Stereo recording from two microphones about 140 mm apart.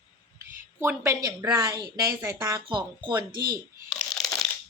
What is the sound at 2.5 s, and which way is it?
Speech, 30° right (ahead or behind).